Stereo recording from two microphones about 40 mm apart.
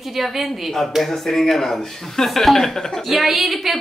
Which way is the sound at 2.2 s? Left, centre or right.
Centre.